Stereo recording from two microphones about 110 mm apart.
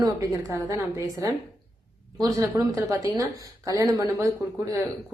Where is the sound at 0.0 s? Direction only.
30° right (ahead or behind).